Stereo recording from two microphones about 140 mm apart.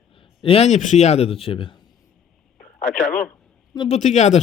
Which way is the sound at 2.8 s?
65° left (ahead or behind).